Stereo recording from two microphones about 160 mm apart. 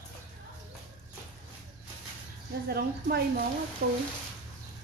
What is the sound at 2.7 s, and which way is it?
Speech, 80° right.